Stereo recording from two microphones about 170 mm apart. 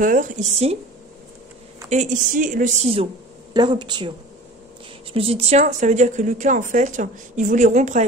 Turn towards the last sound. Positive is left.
turn(degrees=-45)  # may be behind; listen again after turning